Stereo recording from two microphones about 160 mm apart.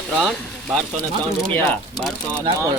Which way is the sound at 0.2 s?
Centre (ahead or behind).